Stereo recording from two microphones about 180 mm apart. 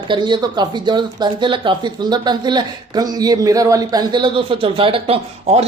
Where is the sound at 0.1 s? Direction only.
25° right (ahead or behind).